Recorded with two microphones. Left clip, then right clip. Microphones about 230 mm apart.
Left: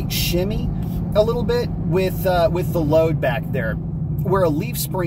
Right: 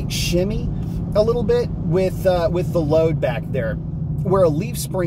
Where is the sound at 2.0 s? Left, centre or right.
Centre.